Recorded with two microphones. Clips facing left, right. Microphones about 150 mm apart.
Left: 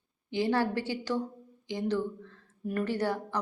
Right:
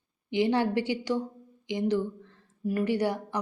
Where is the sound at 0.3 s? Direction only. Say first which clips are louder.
Right 3 dB; 15° right (ahead or behind).